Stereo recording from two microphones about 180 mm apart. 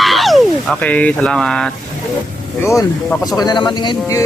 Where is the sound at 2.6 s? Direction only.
15° left (ahead or behind).